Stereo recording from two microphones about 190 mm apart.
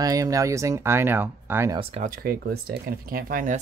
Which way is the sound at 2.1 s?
50° right (ahead or behind).